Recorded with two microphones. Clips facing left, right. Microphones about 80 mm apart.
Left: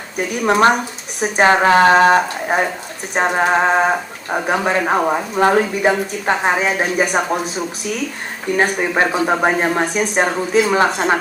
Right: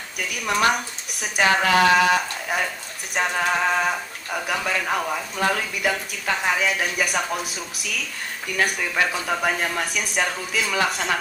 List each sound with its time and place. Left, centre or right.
0.2 s speech: left
8.4 s speech: left